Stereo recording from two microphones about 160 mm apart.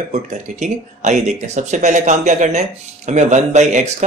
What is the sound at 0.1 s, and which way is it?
A man's voice, 45° right (ahead or behind).